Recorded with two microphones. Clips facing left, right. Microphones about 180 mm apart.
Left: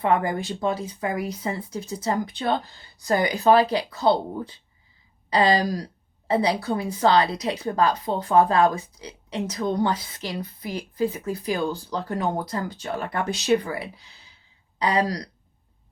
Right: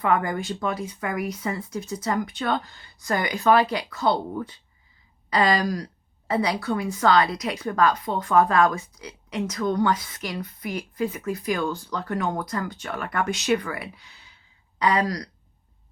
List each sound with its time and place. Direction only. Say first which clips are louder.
0.0 s a woman's voice: left 1 dB; 30° left (ahead or behind)